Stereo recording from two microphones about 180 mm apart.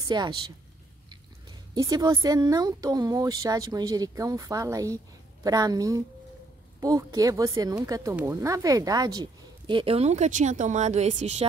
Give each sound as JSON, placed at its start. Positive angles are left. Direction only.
{"t": 0.1, "sound": "speech", "side_deg": -25}
{"t": 1.8, "sound": "speech", "side_deg": -20}